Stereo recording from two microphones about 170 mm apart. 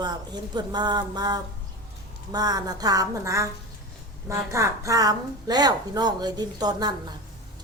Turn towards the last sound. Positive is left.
turn(degrees=-25)  # may be behind; listen again after turning